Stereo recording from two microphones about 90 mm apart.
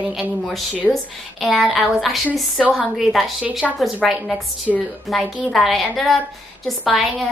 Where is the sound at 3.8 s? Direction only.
Centre (ahead or behind).